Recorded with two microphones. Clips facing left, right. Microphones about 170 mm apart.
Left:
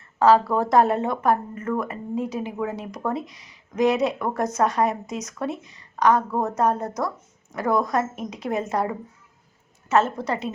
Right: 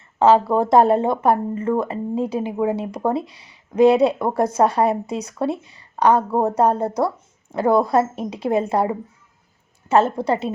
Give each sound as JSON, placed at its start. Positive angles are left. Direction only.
{"t": 0.2, "sound": "a woman's voice", "side_deg": -25}